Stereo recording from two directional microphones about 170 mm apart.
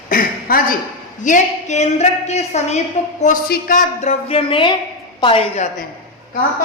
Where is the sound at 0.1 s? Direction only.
55° left (ahead or behind).